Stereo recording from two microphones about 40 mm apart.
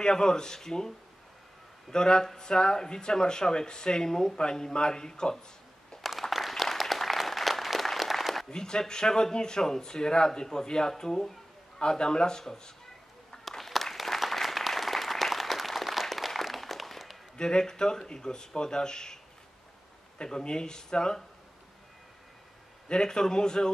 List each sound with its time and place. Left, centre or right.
0.0 s speech: centre
6.3 s applause: centre
8.5 s speech: centre
13.5 s applause: centre
17.4 s speech: centre
20.2 s speech: centre
22.8 s speech: centre